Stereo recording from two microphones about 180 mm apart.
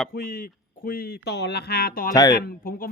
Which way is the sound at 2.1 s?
20° left (ahead or behind).